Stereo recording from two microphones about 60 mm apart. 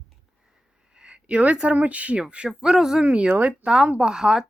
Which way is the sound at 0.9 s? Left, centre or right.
Centre.